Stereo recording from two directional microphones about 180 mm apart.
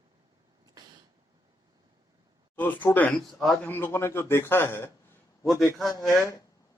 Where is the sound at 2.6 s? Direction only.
10° left (ahead or behind).